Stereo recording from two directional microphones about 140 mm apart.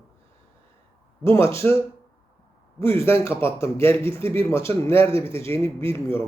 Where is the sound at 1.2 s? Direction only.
20° left (ahead or behind).